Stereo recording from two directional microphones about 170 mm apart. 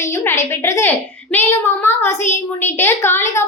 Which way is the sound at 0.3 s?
15° left (ahead or behind).